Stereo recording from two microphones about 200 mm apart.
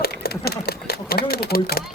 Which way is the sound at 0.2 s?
50° left (ahead or behind).